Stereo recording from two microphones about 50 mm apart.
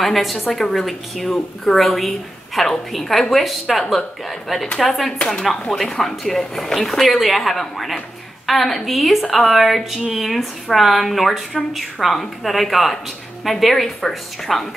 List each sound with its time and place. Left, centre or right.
0.0 s a woman's voice: centre